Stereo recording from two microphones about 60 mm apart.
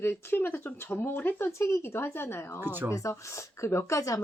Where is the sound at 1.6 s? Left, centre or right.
Left.